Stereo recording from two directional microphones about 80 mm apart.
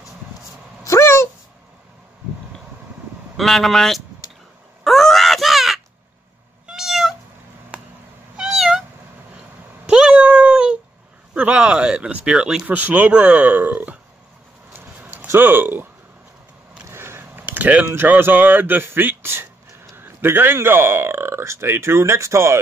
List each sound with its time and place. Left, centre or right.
0.8 s a sound: left
3.3 s speech: centre
4.8 s groan: centre
6.7 s cat: centre
8.4 s cat: centre
9.8 s meow: centre
11.3 s speech: centre
14.7 s a sound: right
16.9 s speech: right